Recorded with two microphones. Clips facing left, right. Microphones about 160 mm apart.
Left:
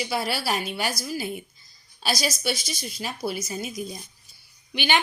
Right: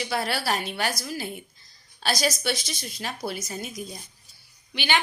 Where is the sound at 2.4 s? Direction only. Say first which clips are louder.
Even; 5° left (ahead or behind).